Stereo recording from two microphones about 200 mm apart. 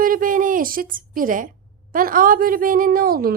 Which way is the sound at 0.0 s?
45° right (ahead or behind).